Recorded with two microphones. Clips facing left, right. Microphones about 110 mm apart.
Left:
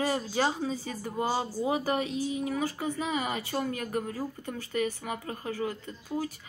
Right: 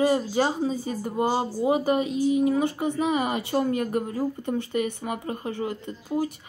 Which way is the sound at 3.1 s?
40° right (ahead or behind).